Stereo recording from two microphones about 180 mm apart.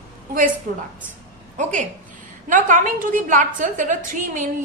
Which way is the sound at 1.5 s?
45° right (ahead or behind).